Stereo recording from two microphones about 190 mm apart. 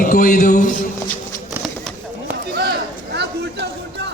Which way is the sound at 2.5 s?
55° right (ahead or behind).